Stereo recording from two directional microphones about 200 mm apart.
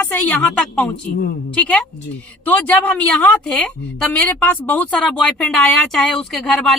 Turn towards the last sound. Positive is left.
turn(degrees=5)  # may be behind; listen again after turning